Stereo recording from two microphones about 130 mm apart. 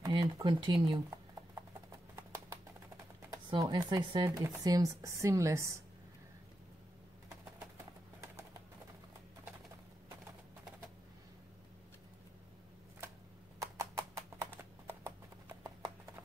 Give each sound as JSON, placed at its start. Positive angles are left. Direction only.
{"t": 0.0, "sound": "speech", "side_deg": -35}
{"t": 2.1, "sound": "clip-clop", "side_deg": -25}
{"t": 3.4, "sound": "speech", "side_deg": -35}
{"t": 4.2, "sound": "speech", "side_deg": -25}
{"t": 7.7, "sound": "a sound", "side_deg": -20}
{"t": 13.6, "sound": "clip-clop", "side_deg": -25}